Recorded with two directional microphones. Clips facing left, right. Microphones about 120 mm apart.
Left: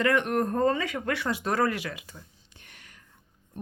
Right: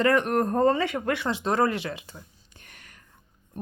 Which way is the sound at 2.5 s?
45° right (ahead or behind).